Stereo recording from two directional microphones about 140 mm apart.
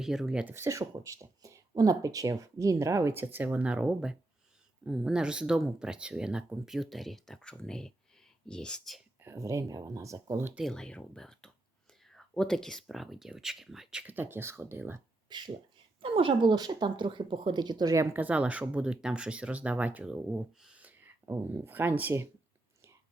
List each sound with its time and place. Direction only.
0.0 s speech: 5° right (ahead or behind)
0.5 s speech: 20° right (ahead or behind); by 9.0 s centre (ahead or behind)
9.2 s speech: 20° right (ahead or behind)
10.6 s speech: 5° left (ahead or behind); by 15.0 s 15° right (ahead or behind)
15.3 s speech: 30° right (ahead or behind); by 22.3 s 15° right (ahead or behind)